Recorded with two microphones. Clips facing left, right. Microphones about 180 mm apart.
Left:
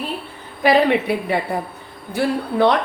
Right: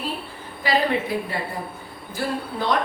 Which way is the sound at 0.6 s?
65° left (ahead or behind).